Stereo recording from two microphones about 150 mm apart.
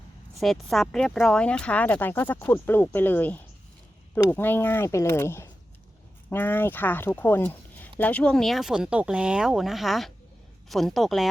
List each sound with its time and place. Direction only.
0.3 s speech: centre (ahead or behind)